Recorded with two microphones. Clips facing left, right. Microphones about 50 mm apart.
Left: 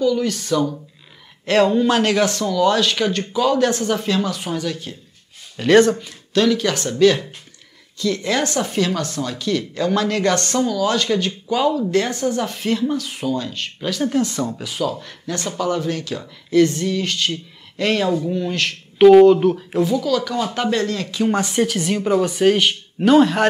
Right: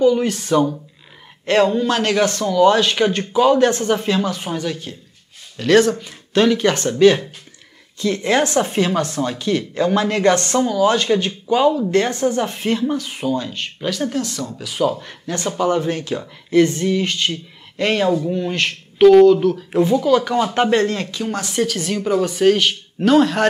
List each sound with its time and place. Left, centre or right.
0.0 s speech: right
1.4 s speech: centre
5.6 s speech: centre
6.3 s a woman's voice: right; by 12.2 s centre
12.4 s speech: centre
14.0 s speech: centre
14.8 s speech: centre
18.9 s speech: centre
19.8 s speech: right
21.3 s speech: centre